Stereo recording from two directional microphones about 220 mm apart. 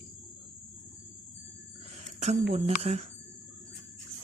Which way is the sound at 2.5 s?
30° right (ahead or behind).